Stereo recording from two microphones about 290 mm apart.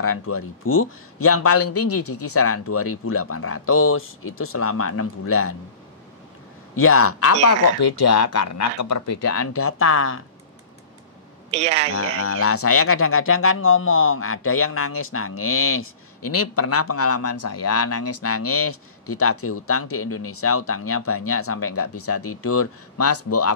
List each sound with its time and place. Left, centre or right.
0.0 s speech: left
6.7 s speech: left
7.4 s speech: left
11.5 s speech: right
12.2 s speech: left